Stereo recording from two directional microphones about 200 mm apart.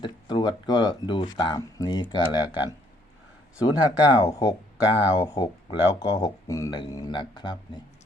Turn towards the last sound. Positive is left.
turn(degrees=20)  # may be behind; listen again after turning